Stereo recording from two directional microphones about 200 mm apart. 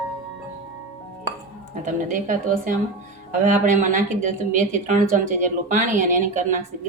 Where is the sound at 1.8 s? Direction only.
40° right (ahead or behind).